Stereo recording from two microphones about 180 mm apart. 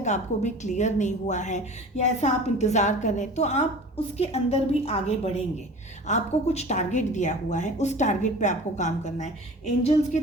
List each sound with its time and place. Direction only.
0.0 s a woman's voice: 40° left (ahead or behind)